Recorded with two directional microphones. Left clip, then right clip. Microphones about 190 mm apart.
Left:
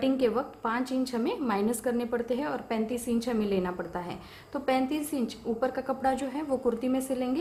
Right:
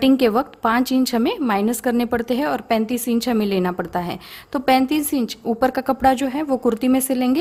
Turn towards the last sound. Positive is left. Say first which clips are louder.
# right 10 dB
turn(degrees=-50)  # may be behind; listen again after turning